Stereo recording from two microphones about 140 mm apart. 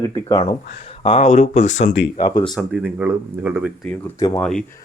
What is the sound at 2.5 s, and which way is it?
Speech, 5° right (ahead or behind).